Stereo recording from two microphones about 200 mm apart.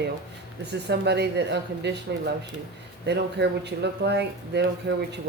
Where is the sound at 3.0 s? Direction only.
55° right (ahead or behind).